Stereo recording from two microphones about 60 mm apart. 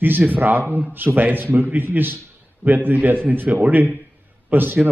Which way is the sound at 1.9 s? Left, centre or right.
Right.